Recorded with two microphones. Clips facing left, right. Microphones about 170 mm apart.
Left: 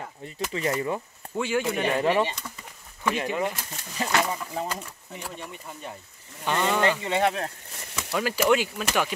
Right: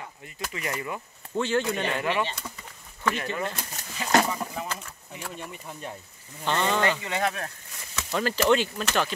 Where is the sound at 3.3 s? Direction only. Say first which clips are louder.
Left 3 dB; 15° left (ahead or behind).